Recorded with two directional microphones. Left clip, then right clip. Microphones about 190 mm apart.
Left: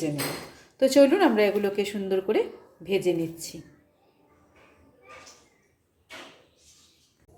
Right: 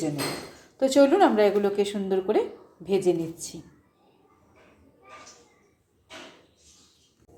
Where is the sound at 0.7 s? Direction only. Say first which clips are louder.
Even; 15° left (ahead or behind).